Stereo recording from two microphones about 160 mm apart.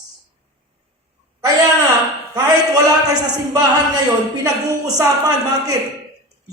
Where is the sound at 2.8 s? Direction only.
25° right (ahead or behind).